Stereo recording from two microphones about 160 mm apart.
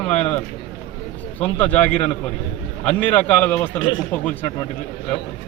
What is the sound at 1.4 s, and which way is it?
A man's voice, 10° left (ahead or behind).